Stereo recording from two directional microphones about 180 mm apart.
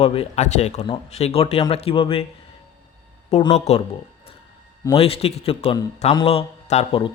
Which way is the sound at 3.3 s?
35° left (ahead or behind).